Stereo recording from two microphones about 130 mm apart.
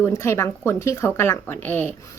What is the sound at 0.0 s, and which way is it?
Speech, 20° left (ahead or behind).